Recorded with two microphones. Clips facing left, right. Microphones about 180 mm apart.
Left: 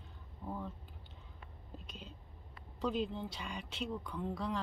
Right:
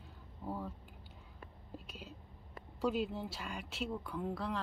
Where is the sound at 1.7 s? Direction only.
5° right (ahead or behind).